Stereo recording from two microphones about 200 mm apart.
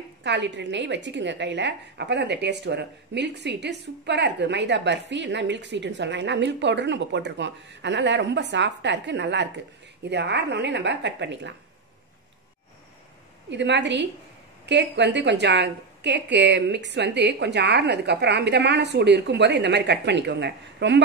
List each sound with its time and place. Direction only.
0.2 s a woman's voice: 60° right (ahead or behind)
13.5 s a woman's voice: 60° right (ahead or behind)